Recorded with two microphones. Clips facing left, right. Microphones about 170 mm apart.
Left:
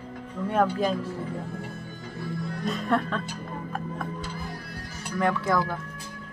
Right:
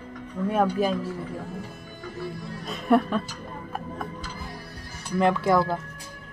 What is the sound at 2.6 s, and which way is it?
Speech, 10° right (ahead or behind).